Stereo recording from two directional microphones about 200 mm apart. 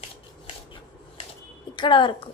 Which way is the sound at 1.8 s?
25° left (ahead or behind).